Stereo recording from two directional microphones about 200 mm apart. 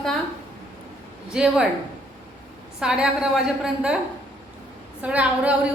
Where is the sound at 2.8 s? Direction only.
5° right (ahead or behind).